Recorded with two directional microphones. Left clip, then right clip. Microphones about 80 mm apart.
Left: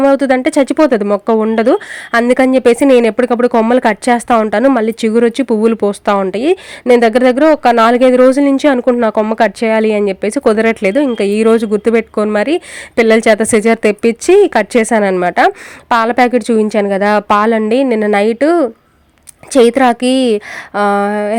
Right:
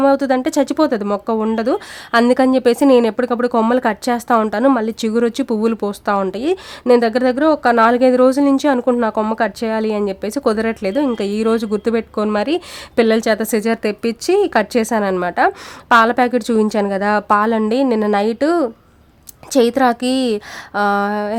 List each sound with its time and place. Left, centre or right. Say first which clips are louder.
0.1 s speech: left 5 dB; left
1.5 s speech: left 7 dB; left
2.3 s speech: left 4 dB; left
13.1 s speech: left 11 dB; left